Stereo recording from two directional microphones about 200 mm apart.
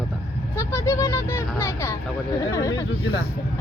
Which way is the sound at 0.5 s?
15° left (ahead or behind).